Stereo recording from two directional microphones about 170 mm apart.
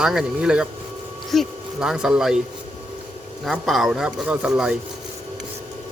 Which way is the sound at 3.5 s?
Centre (ahead or behind).